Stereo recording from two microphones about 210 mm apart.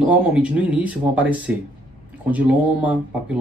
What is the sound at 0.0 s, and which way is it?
Speech, 5° right (ahead or behind).